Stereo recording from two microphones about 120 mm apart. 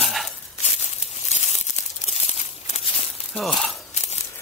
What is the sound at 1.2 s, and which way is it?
Tearing, 65° left (ahead or behind).